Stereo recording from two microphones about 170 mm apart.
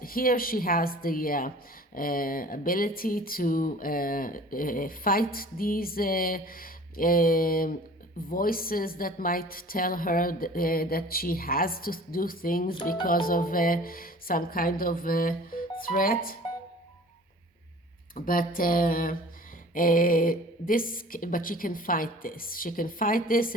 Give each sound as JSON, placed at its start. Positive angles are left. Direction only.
{"t": 0.0, "sound": "speech", "side_deg": 60}
{"t": 18.1, "sound": "speech", "side_deg": 55}